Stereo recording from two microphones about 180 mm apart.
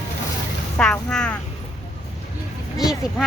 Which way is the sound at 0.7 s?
5° left (ahead or behind).